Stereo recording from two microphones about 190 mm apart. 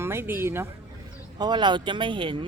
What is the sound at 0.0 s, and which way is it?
Speech, 15° right (ahead or behind).